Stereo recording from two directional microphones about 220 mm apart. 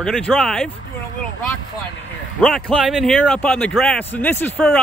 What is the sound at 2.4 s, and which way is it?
Speech, centre (ahead or behind).